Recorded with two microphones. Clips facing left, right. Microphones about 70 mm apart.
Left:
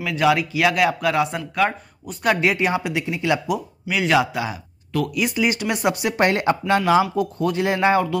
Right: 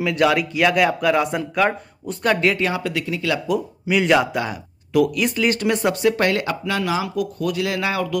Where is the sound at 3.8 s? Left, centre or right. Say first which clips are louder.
Right 2 dB; centre; by 8.2 s left.